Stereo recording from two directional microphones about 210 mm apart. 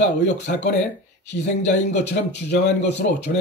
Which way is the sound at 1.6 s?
35° left (ahead or behind).